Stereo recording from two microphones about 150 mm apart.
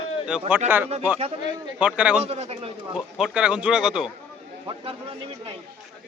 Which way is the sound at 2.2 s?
45° right (ahead or behind).